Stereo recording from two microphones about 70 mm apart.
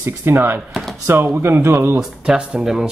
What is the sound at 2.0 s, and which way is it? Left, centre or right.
Speech, centre.